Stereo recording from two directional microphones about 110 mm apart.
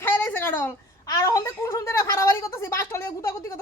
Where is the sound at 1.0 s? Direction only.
30° left (ahead or behind).